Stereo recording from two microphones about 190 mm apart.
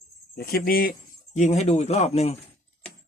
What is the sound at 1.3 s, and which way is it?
Speech, 40° left (ahead or behind).